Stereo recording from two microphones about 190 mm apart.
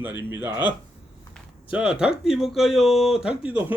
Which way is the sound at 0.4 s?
20° left (ahead or behind).